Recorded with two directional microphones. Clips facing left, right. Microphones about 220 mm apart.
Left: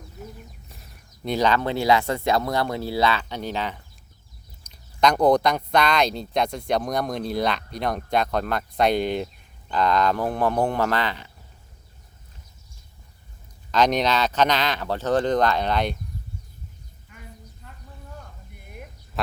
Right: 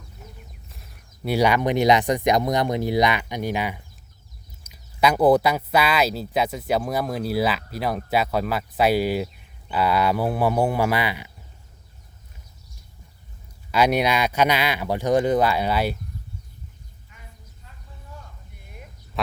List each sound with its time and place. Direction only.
0.7 s speech: centre (ahead or behind)
13.7 s speech: 10° right (ahead or behind)